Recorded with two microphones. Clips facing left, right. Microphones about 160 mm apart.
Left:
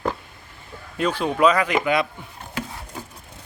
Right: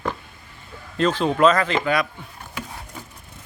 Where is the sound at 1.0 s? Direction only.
10° left (ahead or behind).